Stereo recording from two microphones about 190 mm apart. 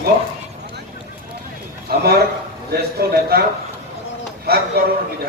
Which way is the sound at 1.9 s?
55° right (ahead or behind).